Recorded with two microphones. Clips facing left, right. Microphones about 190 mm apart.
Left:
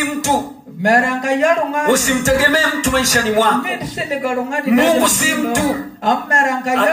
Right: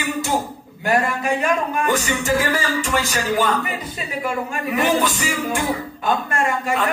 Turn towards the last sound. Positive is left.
turn(degrees=80)